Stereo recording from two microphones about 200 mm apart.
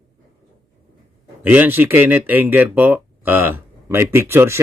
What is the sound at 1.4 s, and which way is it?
Speech, 10° right (ahead or behind).